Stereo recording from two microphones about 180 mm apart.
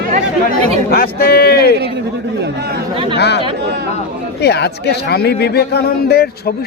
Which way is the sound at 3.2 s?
70° left (ahead or behind).